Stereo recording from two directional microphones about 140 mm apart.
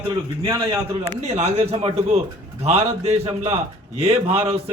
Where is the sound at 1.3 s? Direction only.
50° right (ahead or behind).